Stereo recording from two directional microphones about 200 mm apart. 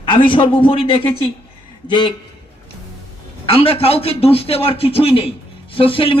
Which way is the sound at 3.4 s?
30° left (ahead or behind).